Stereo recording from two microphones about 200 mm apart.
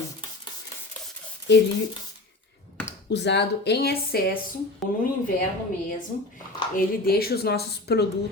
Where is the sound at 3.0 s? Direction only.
60° left (ahead or behind).